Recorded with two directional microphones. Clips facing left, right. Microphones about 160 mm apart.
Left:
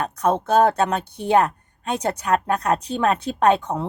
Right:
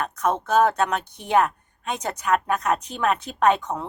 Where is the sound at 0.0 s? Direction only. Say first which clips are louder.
Left 3 dB; 30° left (ahead or behind).